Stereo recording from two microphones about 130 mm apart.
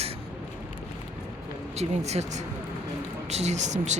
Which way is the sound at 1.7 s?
55° right (ahead or behind).